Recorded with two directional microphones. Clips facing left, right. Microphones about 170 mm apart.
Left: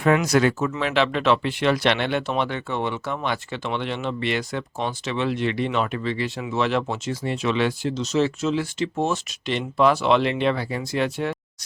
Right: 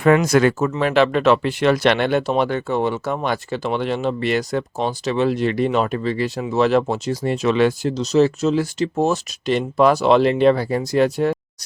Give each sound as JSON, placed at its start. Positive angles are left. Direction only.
{"t": 0.0, "sound": "speech", "side_deg": -55}